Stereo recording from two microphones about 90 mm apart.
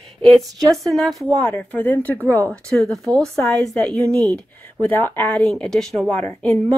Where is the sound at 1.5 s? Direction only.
15° left (ahead or behind).